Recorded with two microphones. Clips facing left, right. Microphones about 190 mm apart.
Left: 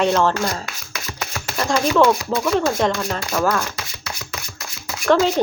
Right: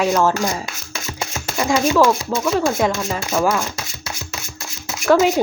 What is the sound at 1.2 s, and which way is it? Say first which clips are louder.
Shuffling cards: right 2 dB; 20° right (ahead or behind).